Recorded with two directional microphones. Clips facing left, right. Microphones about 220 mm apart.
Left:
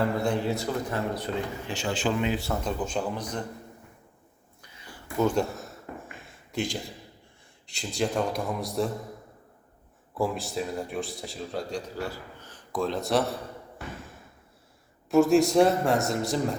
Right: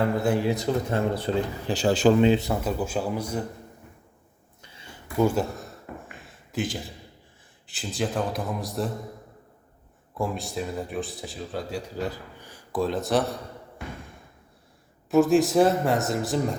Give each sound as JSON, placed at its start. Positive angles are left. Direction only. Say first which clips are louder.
{"t": 0.0, "sound": "speech", "louder": "right 3 dB", "side_deg": -5}
{"t": 0.4, "sound": "speech", "louder": "right 4 dB", "side_deg": -20}
{"t": 2.4, "sound": "speech", "louder": "right 3 dB", "side_deg": -10}
{"t": 4.6, "sound": "a sound", "louder": "right 1 dB", "side_deg": -25}
{"t": 5.2, "sound": "a sound", "louder": "right 2 dB", "side_deg": -5}
{"t": 7.7, "sound": "speech", "louder": "even", "side_deg": -5}
{"t": 10.2, "sound": "speech", "louder": "left 1 dB", "side_deg": 0}
{"t": 11.9, "sound": "a man's voice", "louder": "right 3 dB", "side_deg": -20}
{"t": 15.1, "sound": "speech", "louder": "right 1 dB", "side_deg": 0}